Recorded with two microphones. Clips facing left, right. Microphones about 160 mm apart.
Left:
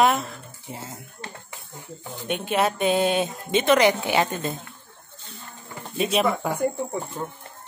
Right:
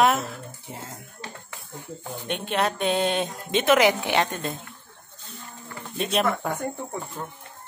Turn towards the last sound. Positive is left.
turn(degrees=10)  # may be behind; listen again after turning